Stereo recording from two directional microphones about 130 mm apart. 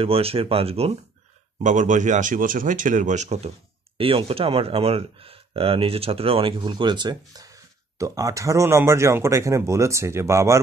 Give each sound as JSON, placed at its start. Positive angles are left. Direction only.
{"t": 0.0, "sound": "speech", "side_deg": -45}
{"t": 1.6, "sound": "speech", "side_deg": -70}
{"t": 4.0, "sound": "speech", "side_deg": -45}